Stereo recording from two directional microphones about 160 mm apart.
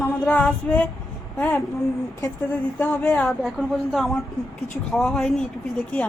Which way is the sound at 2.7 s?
10° left (ahead or behind).